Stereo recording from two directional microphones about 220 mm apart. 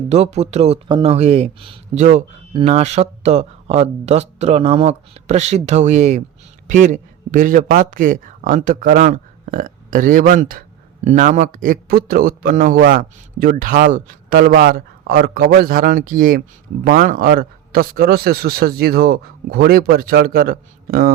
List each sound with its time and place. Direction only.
0.1 s a man's voice: 30° right (ahead or behind)